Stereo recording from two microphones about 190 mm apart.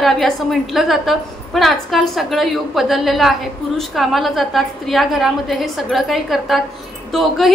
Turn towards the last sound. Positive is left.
turn(degrees=0)  # may be behind; listen again after turning